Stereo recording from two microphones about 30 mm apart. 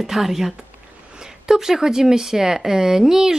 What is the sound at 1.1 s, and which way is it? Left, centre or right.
A woman's voice, right.